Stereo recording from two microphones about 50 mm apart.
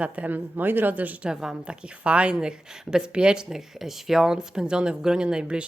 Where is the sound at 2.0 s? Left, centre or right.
Right.